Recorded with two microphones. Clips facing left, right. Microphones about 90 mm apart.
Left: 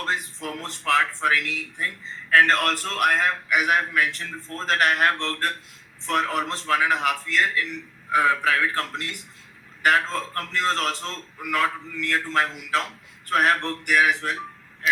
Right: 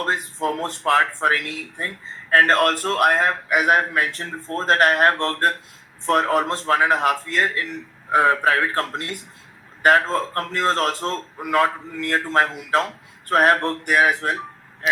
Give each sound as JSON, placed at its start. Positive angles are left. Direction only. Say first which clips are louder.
{"t": 0.0, "sound": "a man's voice", "louder": "right 5 dB", "side_deg": -40}